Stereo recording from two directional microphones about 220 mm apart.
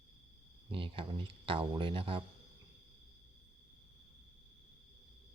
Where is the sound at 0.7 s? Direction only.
25° right (ahead or behind).